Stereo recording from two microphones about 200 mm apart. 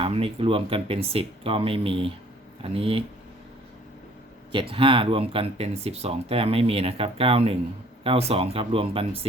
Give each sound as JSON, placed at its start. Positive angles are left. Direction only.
{"t": 0.0, "sound": "speech", "side_deg": -30}
{"t": 4.5, "sound": "speech", "side_deg": -25}